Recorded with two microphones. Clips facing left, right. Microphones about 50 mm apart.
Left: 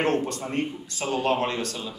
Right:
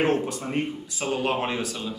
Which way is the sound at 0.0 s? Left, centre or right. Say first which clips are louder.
Right 1 dB; centre.